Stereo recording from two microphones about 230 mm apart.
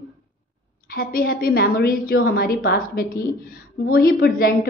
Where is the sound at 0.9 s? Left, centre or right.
Left.